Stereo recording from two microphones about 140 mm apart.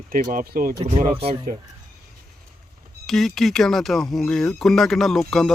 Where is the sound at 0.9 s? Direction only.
55° right (ahead or behind).